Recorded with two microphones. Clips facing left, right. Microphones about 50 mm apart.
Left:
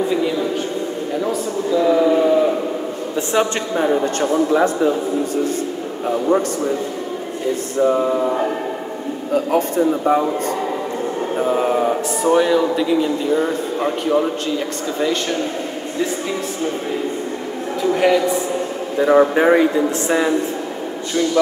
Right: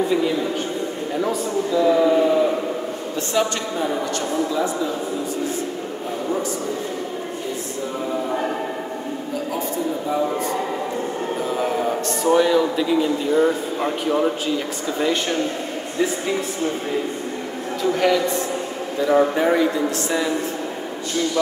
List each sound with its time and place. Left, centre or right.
1.8 s a sound: centre
3.2 s a woman's voice: left
4.5 s speech: left
9.3 s speech: left
11.5 s music: left
12.2 s speech: centre
17.9 s a woman's voice: centre
18.9 s a woman's voice: left